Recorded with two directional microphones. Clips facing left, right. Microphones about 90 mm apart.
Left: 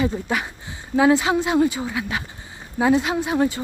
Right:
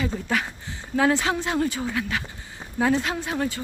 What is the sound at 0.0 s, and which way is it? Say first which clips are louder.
A woman's voice: left 3 dB; 15° left (ahead or behind).